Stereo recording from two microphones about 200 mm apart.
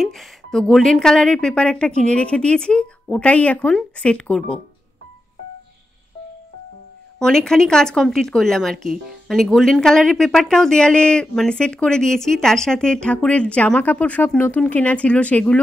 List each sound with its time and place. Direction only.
0.0 s speech: centre (ahead or behind)
7.2 s speech: 5° left (ahead or behind)